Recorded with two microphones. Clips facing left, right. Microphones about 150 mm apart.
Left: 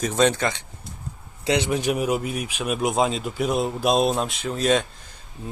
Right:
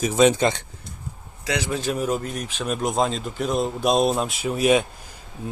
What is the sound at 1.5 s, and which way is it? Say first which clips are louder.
Speech: left 4 dB; 25° left (ahead or behind).